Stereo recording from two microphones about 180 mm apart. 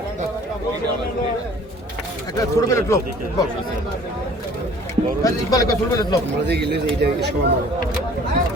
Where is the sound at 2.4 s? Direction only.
20° left (ahead or behind).